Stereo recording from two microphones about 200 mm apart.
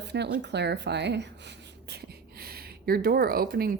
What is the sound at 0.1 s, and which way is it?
Speech, 60° right (ahead or behind).